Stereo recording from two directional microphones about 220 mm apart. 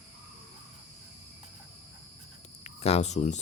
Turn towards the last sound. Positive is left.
turn(degrees=30)  # may be behind; listen again after turning